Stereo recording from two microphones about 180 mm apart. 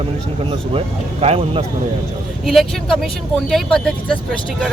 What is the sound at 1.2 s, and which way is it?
Speech, 35° right (ahead or behind).